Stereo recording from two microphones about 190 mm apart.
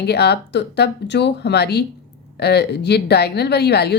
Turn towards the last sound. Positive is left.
turn(degrees=60)  # may be behind; listen again after turning